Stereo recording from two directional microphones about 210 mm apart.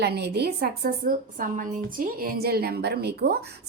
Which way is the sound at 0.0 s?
50° right (ahead or behind).